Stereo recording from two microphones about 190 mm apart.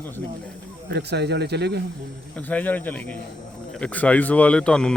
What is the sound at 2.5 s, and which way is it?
Speech, 10° left (ahead or behind).